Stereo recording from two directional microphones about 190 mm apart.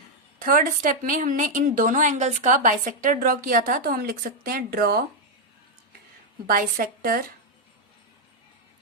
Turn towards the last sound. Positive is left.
turn(degrees=-50)  # may be behind; listen again after turning